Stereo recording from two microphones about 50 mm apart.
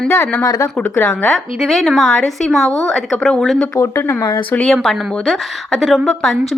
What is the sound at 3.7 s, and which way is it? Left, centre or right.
Speech, left.